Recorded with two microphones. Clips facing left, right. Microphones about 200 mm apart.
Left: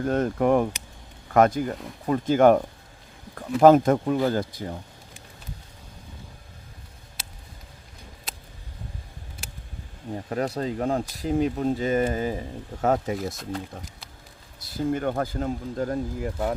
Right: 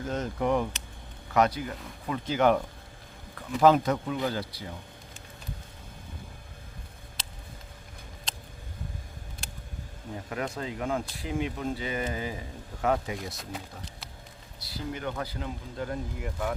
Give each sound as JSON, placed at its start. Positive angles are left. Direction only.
{"t": 0.0, "sound": "speech", "side_deg": 55}
{"t": 3.6, "sound": "speech", "side_deg": 50}
{"t": 7.2, "sound": "a sound", "side_deg": 10}
{"t": 10.2, "sound": "speech", "side_deg": 35}
{"t": 13.3, "sound": "speech", "side_deg": 0}
{"t": 14.6, "sound": "speech", "side_deg": 50}